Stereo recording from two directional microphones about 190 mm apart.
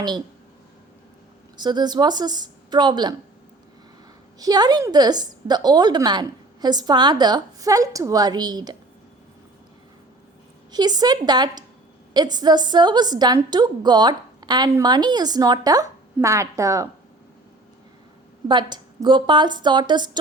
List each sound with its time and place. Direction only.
1.6 s a woman's voice: 20° right (ahead or behind)
4.4 s a woman's voice: 20° right (ahead or behind)
10.7 s a woman's voice: 20° right (ahead or behind)
18.4 s a woman's voice: 25° right (ahead or behind)